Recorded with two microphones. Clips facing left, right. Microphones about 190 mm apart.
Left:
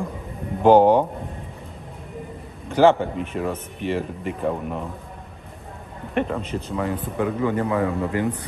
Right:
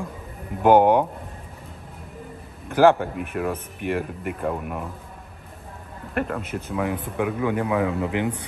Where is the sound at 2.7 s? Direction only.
5° right (ahead or behind).